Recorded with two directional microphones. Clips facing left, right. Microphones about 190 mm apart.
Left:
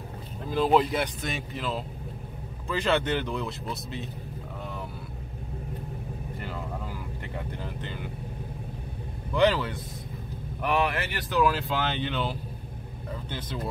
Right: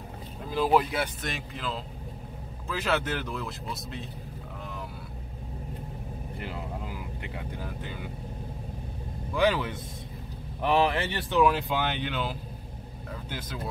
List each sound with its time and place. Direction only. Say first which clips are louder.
0.5 s speech: left 2 dB; 5° right (ahead or behind)
6.4 s vehicle: even; 15° right (ahead or behind)
9.3 s a man's voice: left 2 dB; 10° right (ahead or behind)
10.6 s speech: right 2 dB; 30° right (ahead or behind); by 12.4 s 5° right (ahead or behind)